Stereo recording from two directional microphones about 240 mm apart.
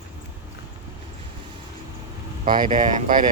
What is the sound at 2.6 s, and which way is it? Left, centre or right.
Speech, right.